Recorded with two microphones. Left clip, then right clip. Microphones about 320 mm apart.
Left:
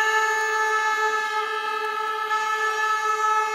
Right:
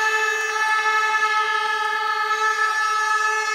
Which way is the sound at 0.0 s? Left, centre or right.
Left.